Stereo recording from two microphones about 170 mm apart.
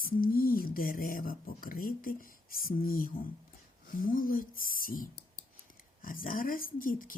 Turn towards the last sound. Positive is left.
turn(degrees=55)  # may be behind; listen again after turning